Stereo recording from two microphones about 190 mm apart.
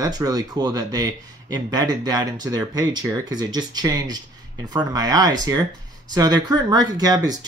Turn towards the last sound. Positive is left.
turn(degrees=-20)  # may be behind; listen again after turning